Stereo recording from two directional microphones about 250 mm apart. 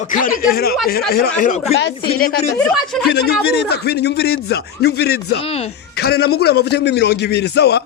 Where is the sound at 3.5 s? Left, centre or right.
Left.